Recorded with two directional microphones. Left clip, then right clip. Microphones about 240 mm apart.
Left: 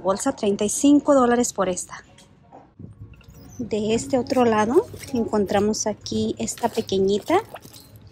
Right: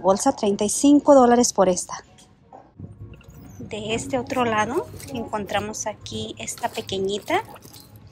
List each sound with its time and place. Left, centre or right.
0.0 s speech: centre
3.6 s a woman's voice: left